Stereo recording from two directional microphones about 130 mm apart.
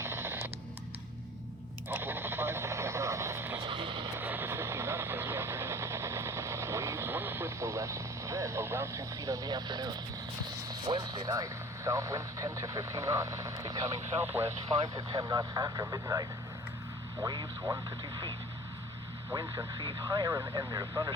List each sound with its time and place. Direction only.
0.0 s a sound: 20° right (ahead or behind)
1.9 s vehicle: 15° right (ahead or behind)
3.6 s vehicle: 40° right (ahead or behind)
4.2 s vehicle: 15° right (ahead or behind); by 10.0 s 30° right (ahead or behind)
10.7 s speech: 35° right (ahead or behind)
19.3 s speech: 25° right (ahead or behind)